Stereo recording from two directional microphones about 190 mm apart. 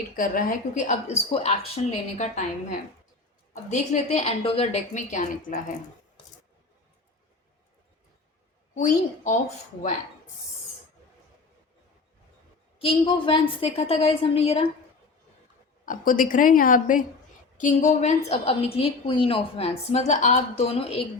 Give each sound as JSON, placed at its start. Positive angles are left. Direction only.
{"t": 0.2, "sound": "a woman's voice", "side_deg": 45}
{"t": 8.7, "sound": "a woman's voice", "side_deg": 40}
{"t": 12.8, "sound": "a woman's voice", "side_deg": 30}
{"t": 15.9, "sound": "a woman's voice", "side_deg": 45}